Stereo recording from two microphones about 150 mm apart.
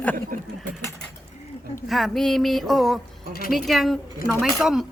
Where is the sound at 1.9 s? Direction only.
Centre (ahead or behind).